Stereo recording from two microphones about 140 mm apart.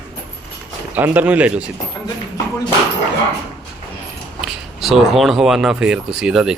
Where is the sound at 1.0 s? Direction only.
15° right (ahead or behind).